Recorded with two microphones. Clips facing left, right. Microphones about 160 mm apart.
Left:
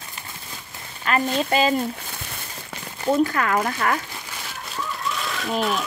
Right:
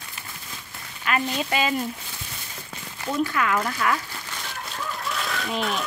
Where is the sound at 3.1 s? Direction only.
40° left (ahead or behind).